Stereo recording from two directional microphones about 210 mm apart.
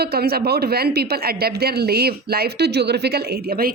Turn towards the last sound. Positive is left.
turn(degrees=-45)  # may be behind; listen again after turning